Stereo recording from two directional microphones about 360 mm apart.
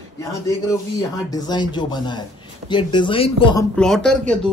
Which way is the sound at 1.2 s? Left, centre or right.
Centre.